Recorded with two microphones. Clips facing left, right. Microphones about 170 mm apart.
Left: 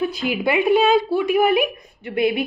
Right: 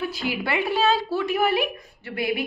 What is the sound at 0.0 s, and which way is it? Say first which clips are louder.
A woman's voice: left 6 dB; 20° left (ahead or behind).